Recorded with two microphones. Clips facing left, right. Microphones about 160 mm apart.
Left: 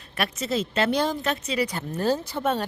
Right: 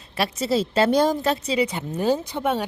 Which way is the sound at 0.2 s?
30° right (ahead or behind).